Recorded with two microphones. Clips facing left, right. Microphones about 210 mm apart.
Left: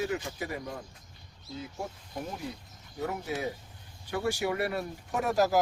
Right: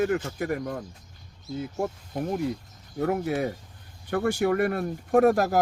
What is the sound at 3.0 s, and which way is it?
Speech, 60° right (ahead or behind).